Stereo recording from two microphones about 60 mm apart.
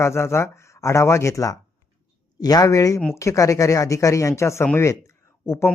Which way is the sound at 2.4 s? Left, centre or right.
Left.